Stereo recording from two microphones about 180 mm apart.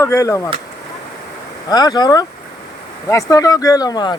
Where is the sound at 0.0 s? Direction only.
15° left (ahead or behind).